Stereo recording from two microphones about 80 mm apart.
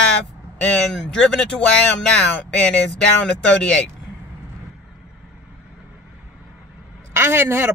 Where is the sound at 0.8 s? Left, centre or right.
Centre.